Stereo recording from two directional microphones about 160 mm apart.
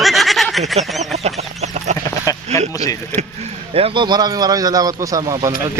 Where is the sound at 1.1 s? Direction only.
45° right (ahead or behind).